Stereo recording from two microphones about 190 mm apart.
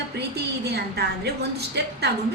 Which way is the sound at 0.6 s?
60° right (ahead or behind).